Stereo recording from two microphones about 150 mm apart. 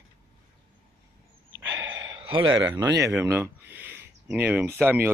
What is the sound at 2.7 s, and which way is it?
Speech, 20° right (ahead or behind).